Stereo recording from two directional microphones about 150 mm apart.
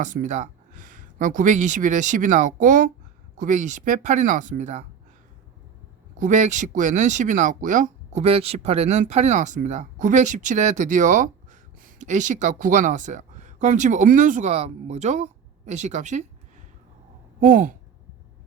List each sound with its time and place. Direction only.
0.0 s speech: 60° right (ahead or behind)
6.1 s speech: 55° right (ahead or behind)
17.4 s speech: 60° right (ahead or behind)